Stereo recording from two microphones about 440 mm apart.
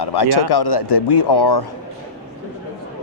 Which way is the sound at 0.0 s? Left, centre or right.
Left.